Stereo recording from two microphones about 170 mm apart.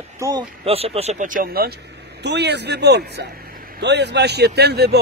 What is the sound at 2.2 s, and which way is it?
A man's voice, 85° right.